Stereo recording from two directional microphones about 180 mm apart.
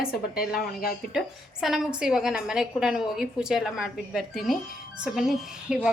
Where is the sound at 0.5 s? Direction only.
55° left (ahead or behind).